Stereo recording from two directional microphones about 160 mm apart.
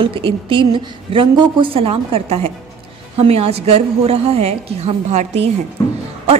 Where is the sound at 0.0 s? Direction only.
35° right (ahead or behind).